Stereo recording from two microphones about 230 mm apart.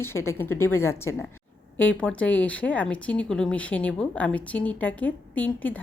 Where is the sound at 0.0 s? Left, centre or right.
Centre.